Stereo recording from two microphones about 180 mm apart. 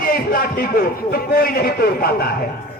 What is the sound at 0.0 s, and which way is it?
A man's voice, 55° left (ahead or behind).